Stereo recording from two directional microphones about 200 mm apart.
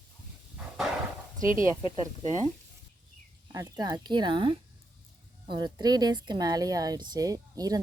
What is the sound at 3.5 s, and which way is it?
Speech, 20° right (ahead or behind).